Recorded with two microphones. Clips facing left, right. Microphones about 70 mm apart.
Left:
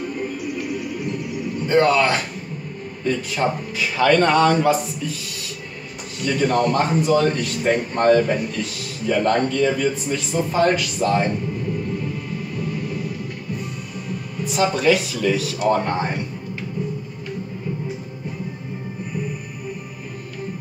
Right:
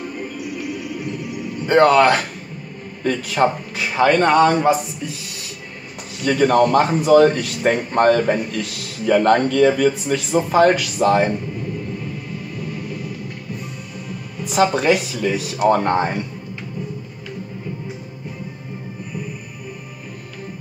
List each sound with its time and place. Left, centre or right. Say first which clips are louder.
1.7 s speech: right 4 dB; right
4.1 s a man's voice: right 1 dB; centre
6.2 s a man's voice: right 4 dB; right
14.5 s speech: right 4 dB; right
15.1 s a man's voice: left 1 dB; centre
15.6 s speech: right 5 dB; right